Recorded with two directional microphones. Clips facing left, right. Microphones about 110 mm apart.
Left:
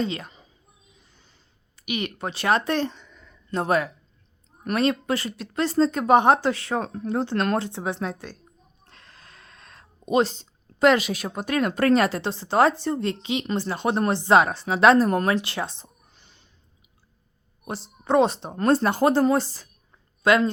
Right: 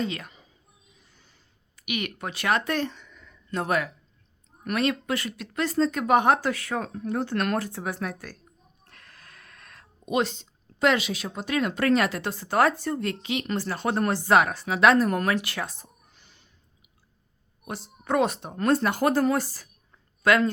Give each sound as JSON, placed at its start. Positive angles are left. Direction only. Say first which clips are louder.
{"t": 0.0, "sound": "a woman's voice", "louder": "left 3 dB", "side_deg": 30}
{"t": 1.7, "sound": "speech", "louder": "left 2 dB", "side_deg": 30}
{"t": 17.7, "sound": "speech", "louder": "left 4 dB", "side_deg": 30}